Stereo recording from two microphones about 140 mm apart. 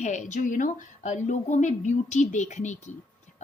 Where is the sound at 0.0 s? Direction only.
60° left (ahead or behind).